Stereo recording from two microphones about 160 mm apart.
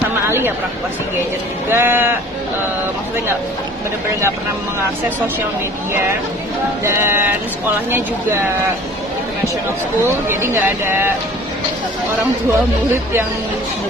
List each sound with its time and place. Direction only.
0.3 s speech: 15° right (ahead or behind)
1.7 s speech: 15° right (ahead or behind)
6.8 s speech: 15° right (ahead or behind)
10.2 s speech: 15° right (ahead or behind)